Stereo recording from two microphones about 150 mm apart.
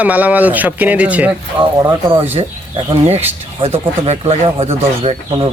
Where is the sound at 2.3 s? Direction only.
40° right (ahead or behind).